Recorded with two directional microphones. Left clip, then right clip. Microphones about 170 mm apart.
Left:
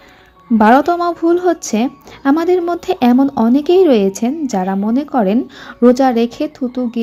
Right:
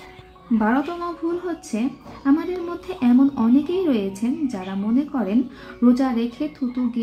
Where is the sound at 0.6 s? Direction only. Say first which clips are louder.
Left 13 dB; 55° left (ahead or behind).